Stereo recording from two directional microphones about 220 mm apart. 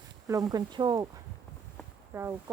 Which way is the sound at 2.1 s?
10° right (ahead or behind).